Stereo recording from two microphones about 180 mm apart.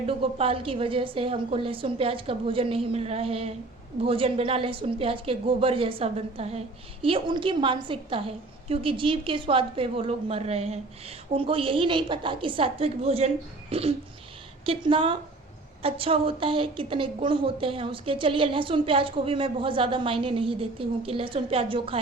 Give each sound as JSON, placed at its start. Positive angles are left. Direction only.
{"t": 0.1, "sound": "a woman's voice", "side_deg": -30}